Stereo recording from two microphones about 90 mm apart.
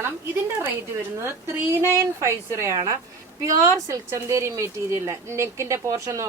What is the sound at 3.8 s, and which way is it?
A woman's voice, 35° right (ahead or behind).